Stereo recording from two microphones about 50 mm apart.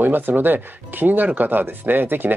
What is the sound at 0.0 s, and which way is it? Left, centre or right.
Speech, right.